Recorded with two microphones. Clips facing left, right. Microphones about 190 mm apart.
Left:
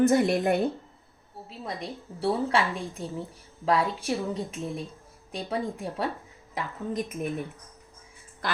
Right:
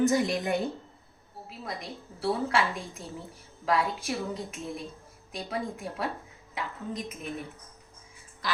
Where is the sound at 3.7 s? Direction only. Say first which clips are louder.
Left 2 dB; 30° left (ahead or behind).